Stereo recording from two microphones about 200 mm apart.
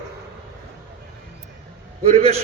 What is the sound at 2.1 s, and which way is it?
Speech, 30° right (ahead or behind).